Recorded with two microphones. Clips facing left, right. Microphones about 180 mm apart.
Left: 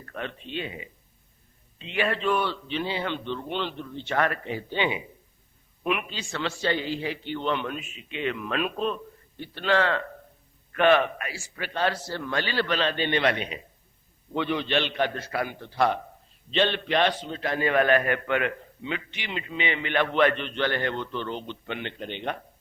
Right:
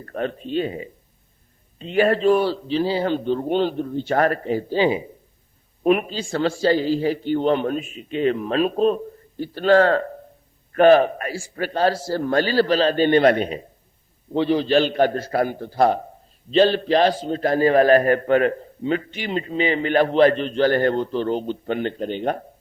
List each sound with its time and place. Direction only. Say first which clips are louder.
0.0 s a man's voice: right 9 dB; 40° right (ahead or behind)